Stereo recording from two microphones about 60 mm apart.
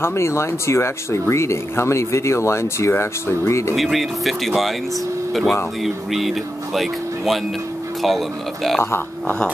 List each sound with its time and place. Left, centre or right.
0.0 s speech: left
3.7 s speech: centre